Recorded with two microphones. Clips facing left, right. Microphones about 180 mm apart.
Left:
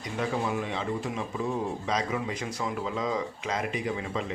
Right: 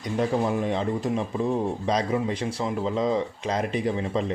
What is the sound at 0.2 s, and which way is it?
Speech, 40° right (ahead or behind).